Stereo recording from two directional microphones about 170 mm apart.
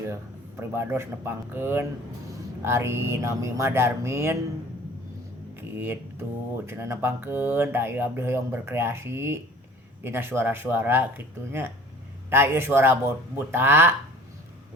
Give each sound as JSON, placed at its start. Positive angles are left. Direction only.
{"t": 0.6, "sound": "speech", "side_deg": -15}
{"t": 5.5, "sound": "a sound", "side_deg": -15}
{"t": 6.7, "sound": "speech", "side_deg": -15}